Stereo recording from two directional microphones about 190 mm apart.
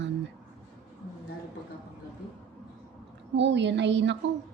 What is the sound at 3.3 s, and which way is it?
Speech, 70° right (ahead or behind).